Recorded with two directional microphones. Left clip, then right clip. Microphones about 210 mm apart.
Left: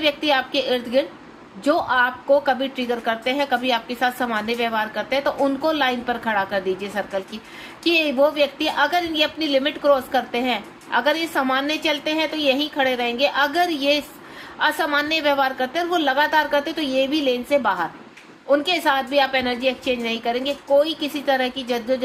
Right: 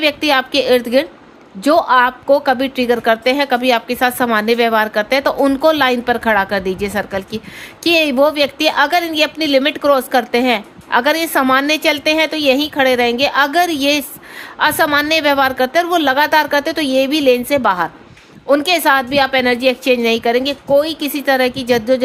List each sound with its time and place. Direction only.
0.0 s a woman's voice: 55° right (ahead or behind)